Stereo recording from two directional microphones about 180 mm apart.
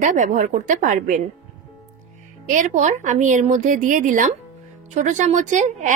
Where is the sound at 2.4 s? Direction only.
45° right (ahead or behind).